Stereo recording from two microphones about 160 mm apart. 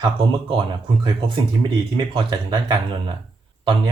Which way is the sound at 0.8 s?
30° right (ahead or behind).